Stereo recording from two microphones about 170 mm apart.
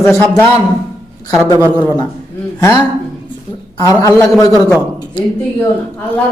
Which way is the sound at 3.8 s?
20° left (ahead or behind).